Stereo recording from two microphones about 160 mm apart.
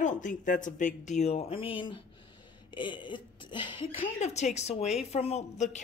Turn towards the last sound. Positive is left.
turn(degrees=45)  # may be behind; listen again after turning